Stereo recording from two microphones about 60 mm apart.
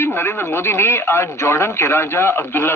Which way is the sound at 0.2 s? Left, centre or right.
Left.